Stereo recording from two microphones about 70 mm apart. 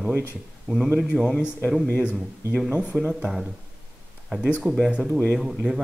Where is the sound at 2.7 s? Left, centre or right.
Centre.